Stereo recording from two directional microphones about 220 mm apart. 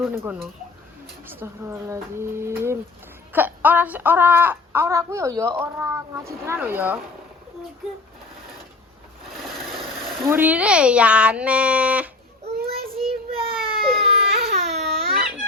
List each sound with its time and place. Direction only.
0.0 s speech: 10° right (ahead or behind)
10.2 s speech: 10° right (ahead or behind)
13.0 s baby cry: 25° right (ahead or behind)